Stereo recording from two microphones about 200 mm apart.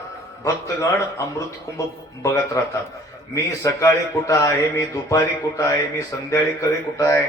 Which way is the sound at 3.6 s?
15° left (ahead or behind).